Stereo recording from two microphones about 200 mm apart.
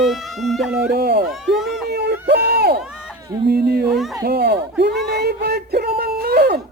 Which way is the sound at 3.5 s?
50° right (ahead or behind).